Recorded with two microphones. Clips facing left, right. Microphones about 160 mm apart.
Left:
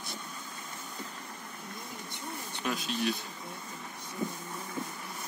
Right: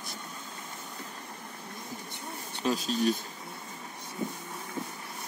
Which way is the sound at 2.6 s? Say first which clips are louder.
Right 5 dB; 35° right (ahead or behind).